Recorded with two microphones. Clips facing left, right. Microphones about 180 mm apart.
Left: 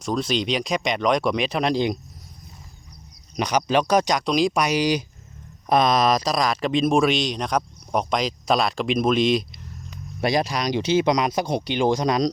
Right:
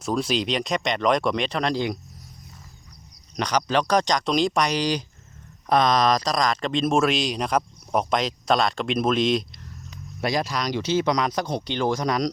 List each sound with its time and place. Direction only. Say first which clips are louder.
0.0 s speech: even; 5° right (ahead or behind); by 2.0 s 15° left (ahead or behind)
3.3 s speech: left 2 dB; 10° left (ahead or behind)
10.2 s speech: left 3 dB; 20° left (ahead or behind)